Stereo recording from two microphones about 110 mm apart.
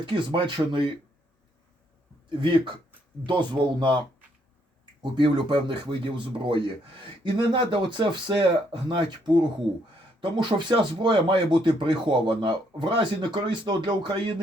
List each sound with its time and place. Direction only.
0.0 s speech: 45° right (ahead or behind)
2.4 s speech: 45° right (ahead or behind)
5.1 s speech: 50° right (ahead or behind)